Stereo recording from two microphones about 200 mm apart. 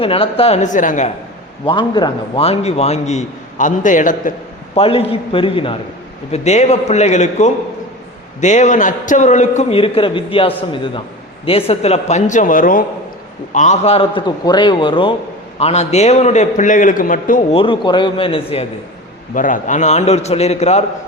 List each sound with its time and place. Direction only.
0.0 s a man's voice: 30° left (ahead or behind)
1.6 s a man's voice: 25° left (ahead or behind); by 4.2 s 40° left (ahead or behind)
4.7 s a man's voice: 30° left (ahead or behind)
17.5 s a man's voice: 25° left (ahead or behind)
19.3 s a man's voice: 40° left (ahead or behind)